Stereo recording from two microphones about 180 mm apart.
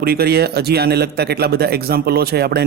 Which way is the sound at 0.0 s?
60° right (ahead or behind).